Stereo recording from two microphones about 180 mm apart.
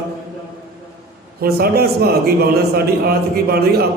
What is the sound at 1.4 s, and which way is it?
A man's voice, 60° right (ahead or behind).